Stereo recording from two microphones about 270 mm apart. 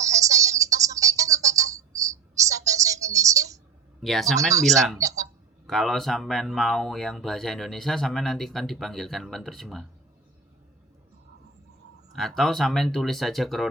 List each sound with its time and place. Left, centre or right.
0.0 s music: centre
4.0 s speech: centre
4.9 s a sound: centre
5.6 s speech: centre
12.1 s speech: centre